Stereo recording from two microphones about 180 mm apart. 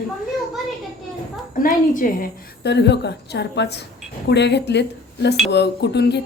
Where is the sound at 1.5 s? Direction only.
45° left (ahead or behind).